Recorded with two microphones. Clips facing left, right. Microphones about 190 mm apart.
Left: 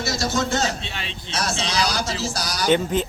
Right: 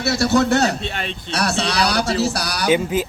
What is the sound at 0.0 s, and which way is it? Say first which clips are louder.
A man's voice: right 7 dB; 65° right (ahead or behind).